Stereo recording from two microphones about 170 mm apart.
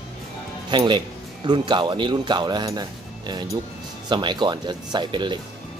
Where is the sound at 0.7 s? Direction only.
25° right (ahead or behind).